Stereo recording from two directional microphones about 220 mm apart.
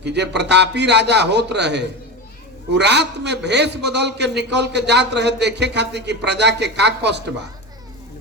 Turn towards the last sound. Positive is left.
turn(degrees=-50)  # may be behind; listen again after turning